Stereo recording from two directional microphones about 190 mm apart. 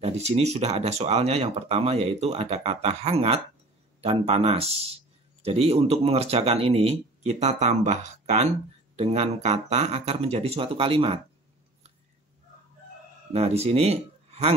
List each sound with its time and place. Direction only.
0.0 s speech: 35° right (ahead or behind)
13.3 s speech: 35° right (ahead or behind)